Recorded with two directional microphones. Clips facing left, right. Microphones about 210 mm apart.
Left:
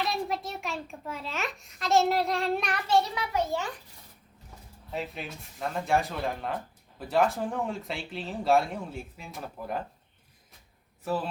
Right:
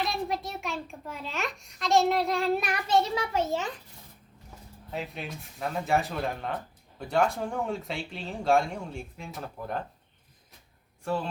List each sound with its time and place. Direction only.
0.0 s a child's voice: centre (ahead or behind)
2.8 s a child's voice: 20° right (ahead or behind)
4.9 s speech: centre (ahead or behind)
11.0 s speech: 5° left (ahead or behind)